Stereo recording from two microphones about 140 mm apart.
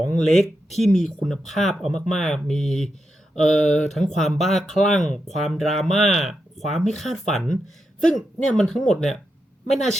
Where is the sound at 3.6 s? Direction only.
55° left (ahead or behind).